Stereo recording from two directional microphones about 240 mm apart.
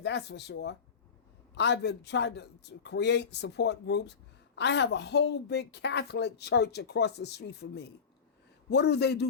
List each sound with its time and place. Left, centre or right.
0.0 s a woman's voice: left